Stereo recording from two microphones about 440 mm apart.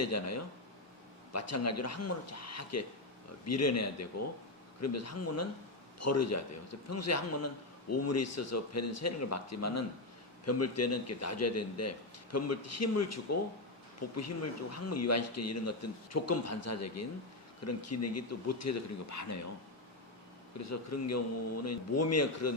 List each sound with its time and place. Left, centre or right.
0.0 s a man's voice: left
20.6 s a man's voice: left